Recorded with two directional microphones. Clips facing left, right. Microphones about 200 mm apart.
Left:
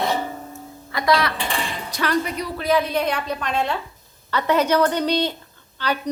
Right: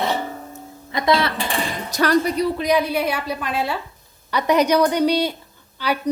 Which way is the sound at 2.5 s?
15° right (ahead or behind).